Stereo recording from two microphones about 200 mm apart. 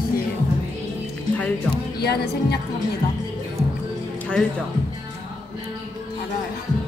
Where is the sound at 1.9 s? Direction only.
55° left (ahead or behind).